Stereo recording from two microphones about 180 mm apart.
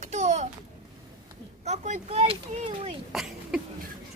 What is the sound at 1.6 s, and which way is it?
Speech, 40° right (ahead or behind).